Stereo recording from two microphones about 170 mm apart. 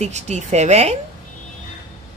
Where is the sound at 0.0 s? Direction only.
40° right (ahead or behind).